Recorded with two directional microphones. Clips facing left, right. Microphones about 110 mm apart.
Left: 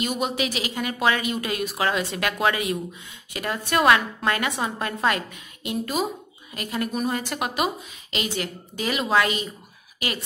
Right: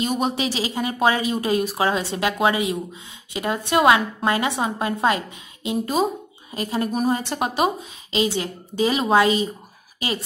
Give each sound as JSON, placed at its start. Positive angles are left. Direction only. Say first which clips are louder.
{"t": 0.0, "sound": "a woman's voice", "louder": "right 3 dB", "side_deg": -30}